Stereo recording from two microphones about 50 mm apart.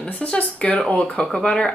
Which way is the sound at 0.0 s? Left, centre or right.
Left.